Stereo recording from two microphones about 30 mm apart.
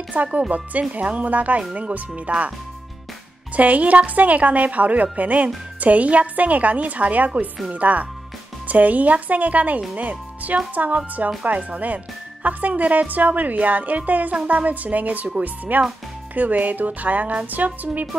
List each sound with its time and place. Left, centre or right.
0.1 s a woman's voice: right
3.5 s a woman's voice: right
17.5 s speech: right